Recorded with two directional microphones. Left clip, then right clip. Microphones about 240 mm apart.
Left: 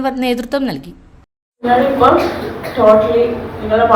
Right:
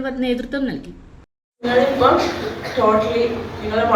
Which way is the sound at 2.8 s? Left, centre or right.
Centre.